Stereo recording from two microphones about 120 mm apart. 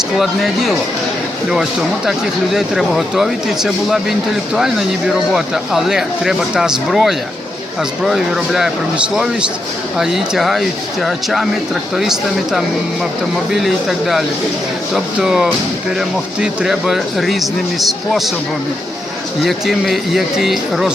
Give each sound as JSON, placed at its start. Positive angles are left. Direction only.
{"t": 0.2, "sound": "speech", "side_deg": 0}
{"t": 2.0, "sound": "speech", "side_deg": -5}
{"t": 10.0, "sound": "speech", "side_deg": -5}
{"t": 13.5, "sound": "speech", "side_deg": 0}
{"t": 19.4, "sound": "speech", "side_deg": 0}